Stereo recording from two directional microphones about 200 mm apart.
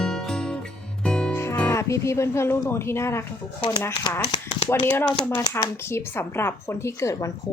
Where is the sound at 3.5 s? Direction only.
20° left (ahead or behind).